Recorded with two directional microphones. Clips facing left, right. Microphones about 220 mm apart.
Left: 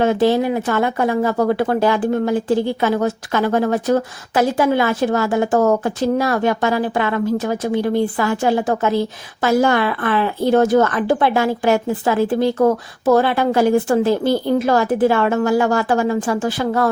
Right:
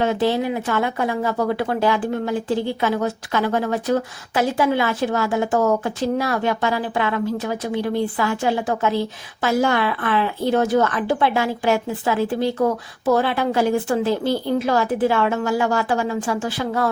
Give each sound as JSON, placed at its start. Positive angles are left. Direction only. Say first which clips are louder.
{"t": 0.0, "sound": "speech", "louder": "left 4 dB", "side_deg": 45}